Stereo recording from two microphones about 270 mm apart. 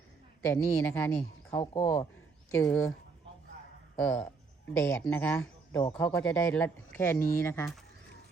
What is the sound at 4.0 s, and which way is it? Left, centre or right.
Speech, centre.